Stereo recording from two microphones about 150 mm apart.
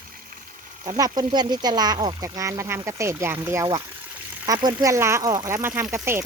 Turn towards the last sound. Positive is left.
turn(degrees=-15)  # may be behind; listen again after turning